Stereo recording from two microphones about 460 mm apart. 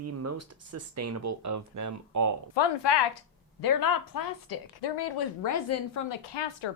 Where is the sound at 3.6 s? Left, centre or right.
Left.